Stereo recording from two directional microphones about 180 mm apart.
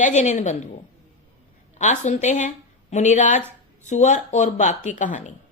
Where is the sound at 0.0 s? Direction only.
40° left (ahead or behind).